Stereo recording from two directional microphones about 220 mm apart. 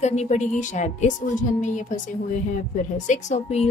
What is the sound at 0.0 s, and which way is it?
Speech, 30° left (ahead or behind).